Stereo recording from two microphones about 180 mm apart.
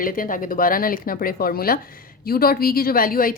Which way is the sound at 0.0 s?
50° left (ahead or behind).